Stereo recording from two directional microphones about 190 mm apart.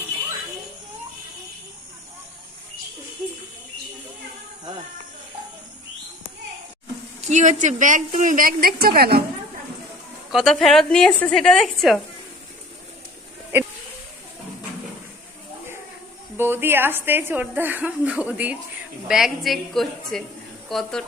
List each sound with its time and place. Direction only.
7.2 s a woman's voice: 40° right (ahead or behind); by 9.2 s 55° right (ahead or behind)
10.3 s a woman's voice: centre (ahead or behind)
16.4 s a woman's voice: 10° right (ahead or behind)